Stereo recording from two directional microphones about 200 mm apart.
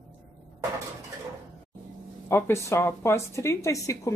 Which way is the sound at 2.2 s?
10° left (ahead or behind).